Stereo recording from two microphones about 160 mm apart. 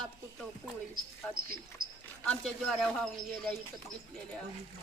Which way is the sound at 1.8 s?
65° right (ahead or behind).